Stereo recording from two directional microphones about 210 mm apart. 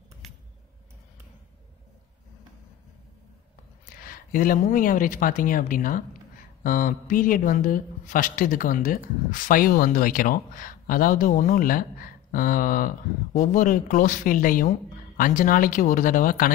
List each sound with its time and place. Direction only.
4.0 s a woman's voice: 40° left (ahead or behind)